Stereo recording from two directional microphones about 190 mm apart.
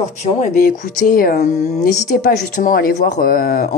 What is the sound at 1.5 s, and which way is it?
Speech, 35° left (ahead or behind).